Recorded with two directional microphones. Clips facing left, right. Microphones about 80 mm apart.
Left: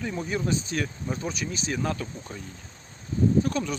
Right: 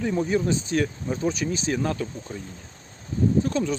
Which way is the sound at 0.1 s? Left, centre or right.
Right.